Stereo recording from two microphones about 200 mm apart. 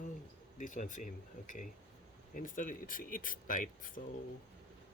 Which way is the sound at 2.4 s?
40° left (ahead or behind).